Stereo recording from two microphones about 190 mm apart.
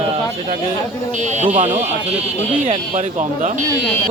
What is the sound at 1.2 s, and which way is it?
Speech, 40° right (ahead or behind).